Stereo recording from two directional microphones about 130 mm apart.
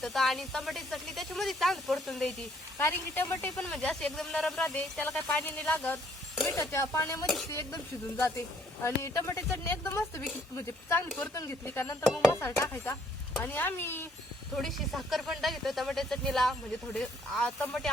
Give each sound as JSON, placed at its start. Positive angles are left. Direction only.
{"t": 0.0, "sound": "speech", "side_deg": 0}
{"t": 2.7, "sound": "speech", "side_deg": 15}
{"t": 3.5, "sound": "a woman's voice", "side_deg": 5}
{"t": 12.0, "sound": "speech", "side_deg": 0}
{"t": 12.4, "sound": "speech", "side_deg": 20}
{"t": 14.5, "sound": "speech", "side_deg": 0}